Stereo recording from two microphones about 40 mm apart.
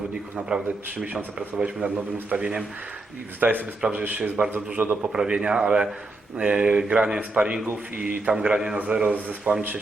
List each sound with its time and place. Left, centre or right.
0.3 s a man's voice: centre
3.4 s a man's voice: right
3.8 s a man's voice: right
4.8 s a man's voice: right
5.1 s a man's voice: right
9.5 s a man's voice: right